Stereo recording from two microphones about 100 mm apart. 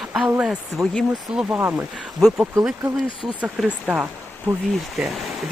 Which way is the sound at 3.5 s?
10° right (ahead or behind).